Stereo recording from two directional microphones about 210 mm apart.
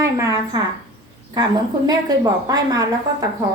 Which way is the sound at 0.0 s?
15° right (ahead or behind).